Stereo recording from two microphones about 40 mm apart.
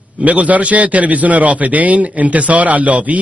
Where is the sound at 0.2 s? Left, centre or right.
Right.